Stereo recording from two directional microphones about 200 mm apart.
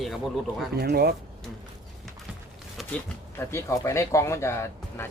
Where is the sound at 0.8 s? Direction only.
50° right (ahead or behind).